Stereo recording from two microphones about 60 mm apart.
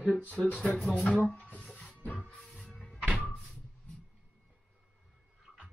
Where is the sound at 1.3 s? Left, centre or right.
Centre.